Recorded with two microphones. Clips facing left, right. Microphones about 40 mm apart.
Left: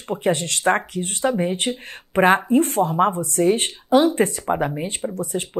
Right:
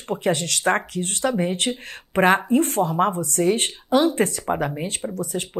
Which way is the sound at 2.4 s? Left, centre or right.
Centre.